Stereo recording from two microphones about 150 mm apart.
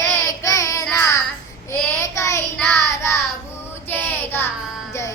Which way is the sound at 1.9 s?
20° left (ahead or behind).